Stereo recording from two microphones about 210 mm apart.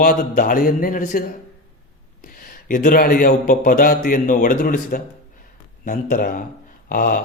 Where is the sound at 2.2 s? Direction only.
40° left (ahead or behind).